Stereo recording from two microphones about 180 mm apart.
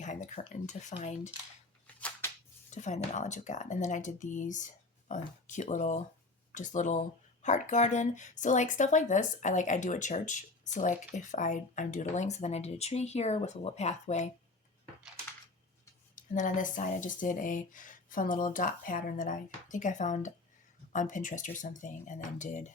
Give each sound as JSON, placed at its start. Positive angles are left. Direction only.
{"t": 0.0, "sound": "speech", "side_deg": 40}
{"t": 2.0, "sound": "a sound", "side_deg": 10}
{"t": 2.6, "sound": "speech", "side_deg": 40}
{"t": 16.1, "sound": "speech", "side_deg": 45}